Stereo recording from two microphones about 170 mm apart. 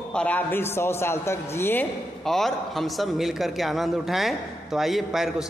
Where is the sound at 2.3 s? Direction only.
Centre (ahead or behind).